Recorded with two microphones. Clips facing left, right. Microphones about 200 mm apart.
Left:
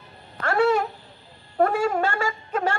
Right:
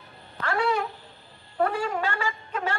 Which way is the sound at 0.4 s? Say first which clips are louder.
Left 5 dB; 45° left (ahead or behind).